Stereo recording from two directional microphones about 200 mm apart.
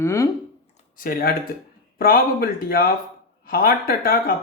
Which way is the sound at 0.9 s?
45° left (ahead or behind).